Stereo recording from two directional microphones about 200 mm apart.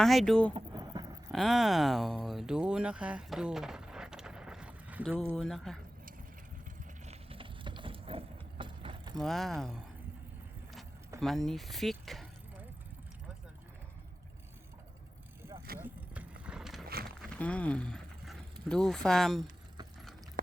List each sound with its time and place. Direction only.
0.0 s speech: centre (ahead or behind)
0.5 s a sound: 20° right (ahead or behind)
1.3 s speech: centre (ahead or behind)
7.0 s a sound: 30° right (ahead or behind)
9.1 s speech: centre (ahead or behind)
11.2 s speech: centre (ahead or behind)
15.8 s vehicle: 5° right (ahead or behind)
16.8 s a sound: 50° right (ahead or behind)
17.2 s speech: 5° left (ahead or behind)